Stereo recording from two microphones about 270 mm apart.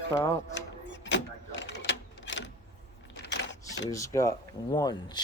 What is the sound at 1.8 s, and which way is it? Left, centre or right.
Typewriter, left.